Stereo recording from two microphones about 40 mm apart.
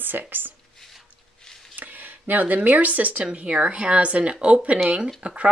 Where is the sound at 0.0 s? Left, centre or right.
Right.